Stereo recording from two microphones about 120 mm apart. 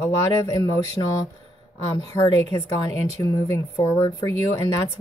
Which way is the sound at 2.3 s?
25° left (ahead or behind).